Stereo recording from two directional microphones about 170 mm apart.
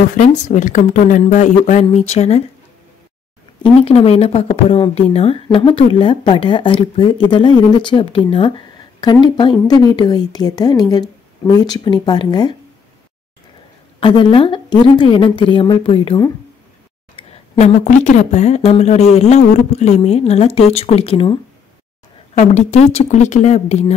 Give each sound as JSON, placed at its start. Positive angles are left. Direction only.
{"t": 0.1, "sound": "speech", "side_deg": 45}
{"t": 3.6, "sound": "speech", "side_deg": 35}
{"t": 13.9, "sound": "speech", "side_deg": 30}
{"t": 22.4, "sound": "speech", "side_deg": 40}